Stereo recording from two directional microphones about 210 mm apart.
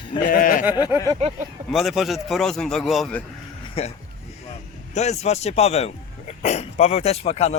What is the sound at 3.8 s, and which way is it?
Speech, 30° left (ahead or behind).